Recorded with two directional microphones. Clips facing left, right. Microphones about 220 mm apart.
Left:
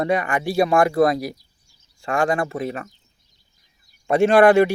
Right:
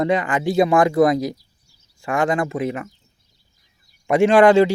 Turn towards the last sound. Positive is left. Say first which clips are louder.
# right 1 dB
turn(degrees=-15)  # may be behind; listen again after turning